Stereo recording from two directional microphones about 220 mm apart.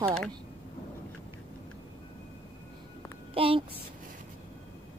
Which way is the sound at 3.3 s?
25° right (ahead or behind).